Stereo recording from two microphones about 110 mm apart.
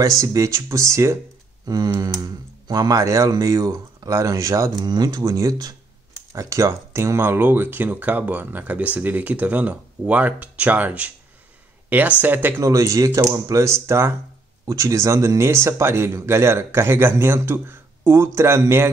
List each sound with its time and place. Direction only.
0.2 s speech: 30° right (ahead or behind)
12.6 s speech: 30° right (ahead or behind)